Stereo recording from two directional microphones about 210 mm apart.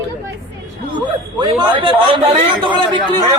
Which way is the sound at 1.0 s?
20° right (ahead or behind).